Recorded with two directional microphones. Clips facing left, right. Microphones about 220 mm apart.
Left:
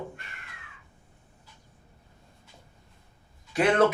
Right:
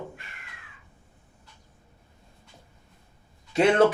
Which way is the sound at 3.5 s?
25° right (ahead or behind).